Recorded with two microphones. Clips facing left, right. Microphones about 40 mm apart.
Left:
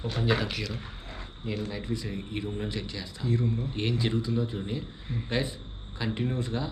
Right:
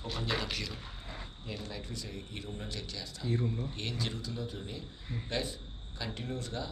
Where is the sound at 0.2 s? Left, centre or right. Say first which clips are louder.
Left 7 dB; centre.